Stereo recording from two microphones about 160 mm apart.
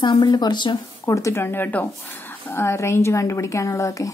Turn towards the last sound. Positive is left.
turn(degrees=20)  # may be behind; listen again after turning